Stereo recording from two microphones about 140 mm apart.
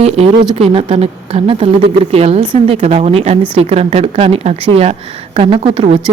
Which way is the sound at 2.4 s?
35° right (ahead or behind).